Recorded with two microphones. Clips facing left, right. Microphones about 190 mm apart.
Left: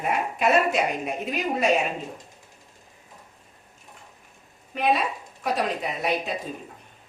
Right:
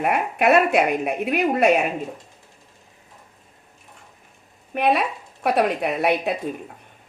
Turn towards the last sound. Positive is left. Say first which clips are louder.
# right 6 dB
turn(degrees=-60)  # may be behind; listen again after turning